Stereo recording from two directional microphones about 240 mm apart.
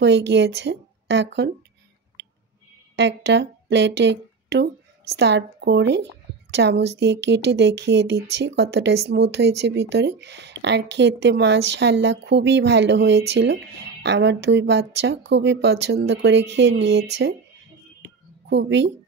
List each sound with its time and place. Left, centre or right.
0.0 s speech: right
3.0 s speech: right
18.0 s a sound: right